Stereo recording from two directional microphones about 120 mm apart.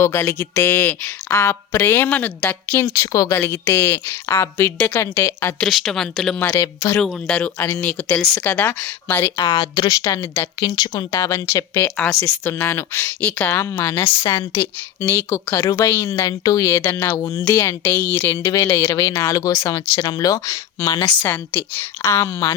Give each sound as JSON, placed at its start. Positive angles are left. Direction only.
{"t": 0.0, "sound": "a woman's voice", "side_deg": 20}
{"t": 5.5, "sound": "speech", "side_deg": 0}
{"t": 6.5, "sound": "a woman's voice", "side_deg": 20}
{"t": 7.0, "sound": "speech", "side_deg": 5}
{"t": 9.3, "sound": "speech", "side_deg": 40}
{"t": 10.2, "sound": "speech", "side_deg": 15}
{"t": 10.6, "sound": "a woman's voice", "side_deg": 35}
{"t": 21.2, "sound": "speech", "side_deg": 15}